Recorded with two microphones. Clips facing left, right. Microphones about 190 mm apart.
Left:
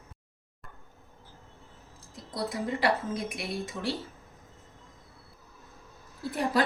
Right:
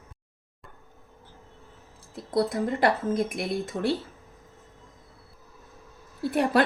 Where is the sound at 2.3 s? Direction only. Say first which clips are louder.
Right 7 dB; 50° right (ahead or behind).